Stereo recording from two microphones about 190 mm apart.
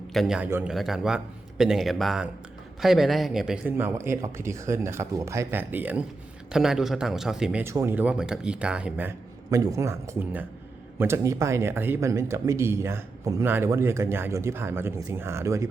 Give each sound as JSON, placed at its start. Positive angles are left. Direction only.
{"t": 0.1, "sound": "speech", "side_deg": 0}